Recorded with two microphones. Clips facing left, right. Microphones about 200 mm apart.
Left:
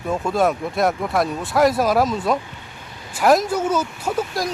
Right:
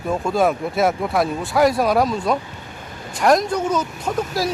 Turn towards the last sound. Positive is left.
turn(degrees=0)  # may be behind; listen again after turning